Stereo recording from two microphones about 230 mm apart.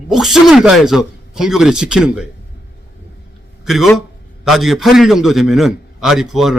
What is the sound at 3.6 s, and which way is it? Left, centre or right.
A man's voice, centre.